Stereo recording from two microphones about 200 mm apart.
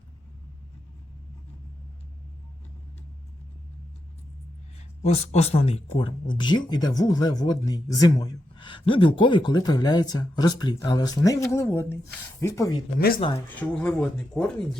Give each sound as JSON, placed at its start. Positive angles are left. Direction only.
{"t": 5.0, "sound": "speech", "side_deg": 30}